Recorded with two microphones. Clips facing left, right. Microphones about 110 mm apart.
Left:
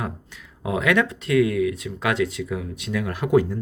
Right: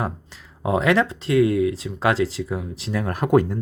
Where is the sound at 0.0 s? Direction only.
35° right (ahead or behind).